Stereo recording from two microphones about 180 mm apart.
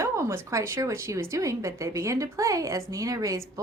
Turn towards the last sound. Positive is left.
turn(degrees=-20)  # may be behind; listen again after turning